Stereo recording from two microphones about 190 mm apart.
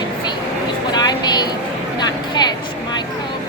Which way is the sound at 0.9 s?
20° left (ahead or behind).